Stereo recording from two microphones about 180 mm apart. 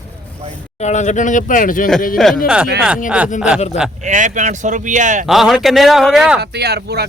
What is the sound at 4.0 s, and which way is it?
Speech, 45° right (ahead or behind).